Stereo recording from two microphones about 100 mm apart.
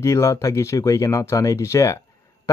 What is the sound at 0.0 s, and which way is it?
Speech, 30° left (ahead or behind).